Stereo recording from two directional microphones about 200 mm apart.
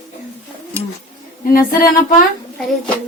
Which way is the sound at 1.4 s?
45° left (ahead or behind).